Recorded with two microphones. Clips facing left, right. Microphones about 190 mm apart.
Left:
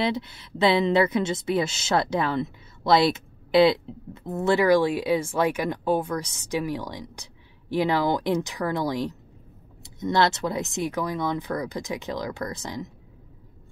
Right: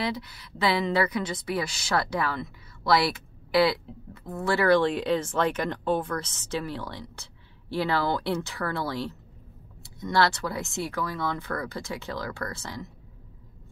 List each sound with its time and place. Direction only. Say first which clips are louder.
0.0 s a woman's voice: left 5 dB; 25° left (ahead or behind)
4.6 s a woman's voice: right 2 dB; 10° left (ahead or behind)